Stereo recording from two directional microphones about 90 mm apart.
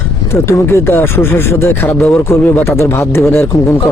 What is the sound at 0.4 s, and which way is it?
Speech, 30° left (ahead or behind).